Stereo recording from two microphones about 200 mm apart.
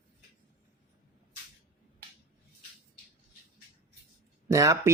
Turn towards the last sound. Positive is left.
turn(degrees=-15)  # may be behind; listen again after turning